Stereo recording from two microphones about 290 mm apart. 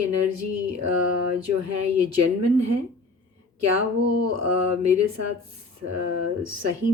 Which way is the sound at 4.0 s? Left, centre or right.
Right.